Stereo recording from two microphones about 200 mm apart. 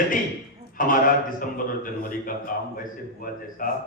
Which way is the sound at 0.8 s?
45° left (ahead or behind).